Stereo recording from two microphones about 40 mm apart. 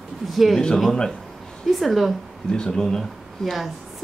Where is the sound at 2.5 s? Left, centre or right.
Centre.